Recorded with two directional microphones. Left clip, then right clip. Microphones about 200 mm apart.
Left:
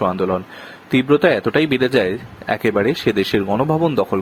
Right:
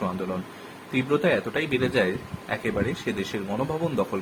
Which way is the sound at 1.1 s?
45° left (ahead or behind).